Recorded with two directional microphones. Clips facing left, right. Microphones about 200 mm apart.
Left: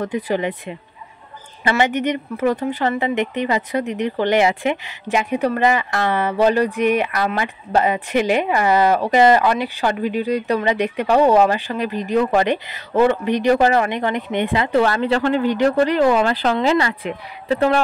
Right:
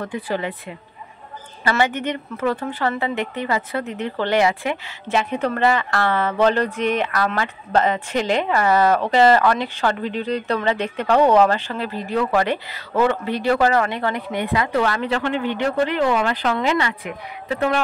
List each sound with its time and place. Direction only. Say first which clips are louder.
0.0 s a woman's voice: left 4 dB; 20° left (ahead or behind); by 17.8 s 35° left (ahead or behind)